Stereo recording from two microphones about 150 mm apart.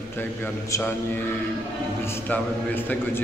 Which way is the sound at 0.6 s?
20° left (ahead or behind).